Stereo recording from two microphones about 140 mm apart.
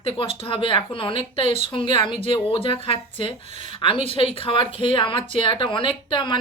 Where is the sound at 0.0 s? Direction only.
40° left (ahead or behind).